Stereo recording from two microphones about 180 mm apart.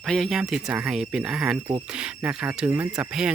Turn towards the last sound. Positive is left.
turn(degrees=-5)  # may be behind; listen again after turning